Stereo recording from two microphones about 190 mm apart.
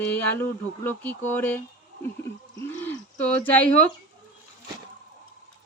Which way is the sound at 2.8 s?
10° left (ahead or behind).